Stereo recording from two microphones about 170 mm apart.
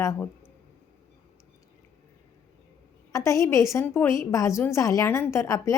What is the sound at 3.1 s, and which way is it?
A woman's voice, 20° left (ahead or behind).